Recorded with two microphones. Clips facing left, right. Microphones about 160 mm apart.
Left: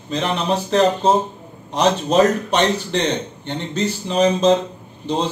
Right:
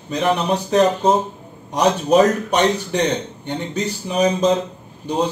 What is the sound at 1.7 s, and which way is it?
A man's voice, 10° right (ahead or behind).